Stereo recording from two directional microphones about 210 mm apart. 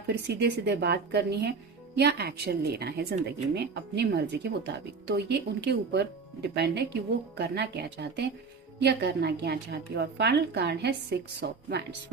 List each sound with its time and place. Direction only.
0.1 s a woman's voice: 55° right (ahead or behind)